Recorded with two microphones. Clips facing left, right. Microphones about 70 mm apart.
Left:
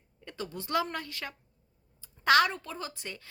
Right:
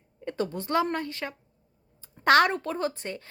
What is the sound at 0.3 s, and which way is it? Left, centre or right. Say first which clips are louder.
A woman's voice: right 6 dB; right.